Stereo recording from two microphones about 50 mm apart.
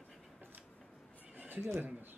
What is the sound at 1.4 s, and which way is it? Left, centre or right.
Neigh, right.